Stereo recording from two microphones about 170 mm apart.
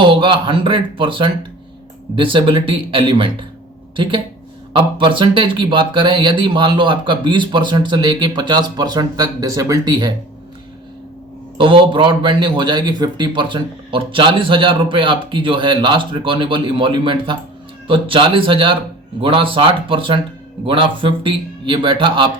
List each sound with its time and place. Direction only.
0.0 s speech: 30° right (ahead or behind)
4.7 s speech: 30° right (ahead or behind)
11.5 s speech: 30° right (ahead or behind)